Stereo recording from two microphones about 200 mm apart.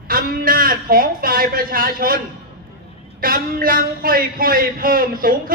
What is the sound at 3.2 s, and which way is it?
A woman's voice, 45° right (ahead or behind).